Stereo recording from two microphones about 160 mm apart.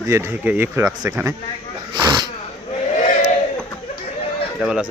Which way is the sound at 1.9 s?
25° right (ahead or behind).